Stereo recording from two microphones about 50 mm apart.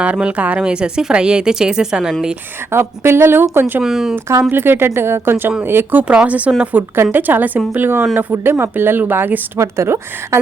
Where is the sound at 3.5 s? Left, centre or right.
Right.